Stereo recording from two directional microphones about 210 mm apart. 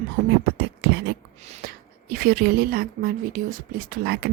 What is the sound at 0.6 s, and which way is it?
Beatboxing, 50° right (ahead or behind).